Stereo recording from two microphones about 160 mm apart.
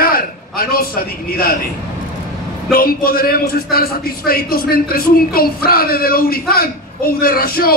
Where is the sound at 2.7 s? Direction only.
70° left (ahead or behind).